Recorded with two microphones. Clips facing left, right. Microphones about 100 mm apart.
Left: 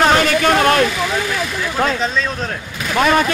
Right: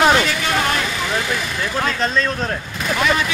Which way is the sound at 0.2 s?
50° left (ahead or behind).